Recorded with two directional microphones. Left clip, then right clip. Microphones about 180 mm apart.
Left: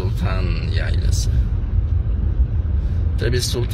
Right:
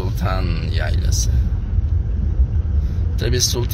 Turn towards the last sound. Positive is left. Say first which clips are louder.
# right 2 dB
turn(degrees=-20)  # may be behind; listen again after turning